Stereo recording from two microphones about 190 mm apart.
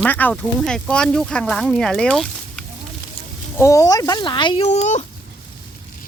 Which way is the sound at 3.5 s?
15° left (ahead or behind).